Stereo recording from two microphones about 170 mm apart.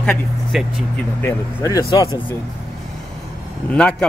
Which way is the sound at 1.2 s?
15° left (ahead or behind).